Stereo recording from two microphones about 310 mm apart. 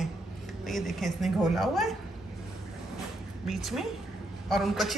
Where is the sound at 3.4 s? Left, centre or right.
Centre.